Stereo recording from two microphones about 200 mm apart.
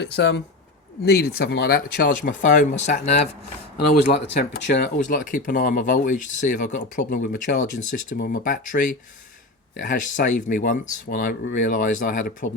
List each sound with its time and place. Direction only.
0.0 s speech: 60° left (ahead or behind); by 3.2 s 35° left (ahead or behind)
3.8 s speech: 55° left (ahead or behind)
4.9 s speech: 40° left (ahead or behind)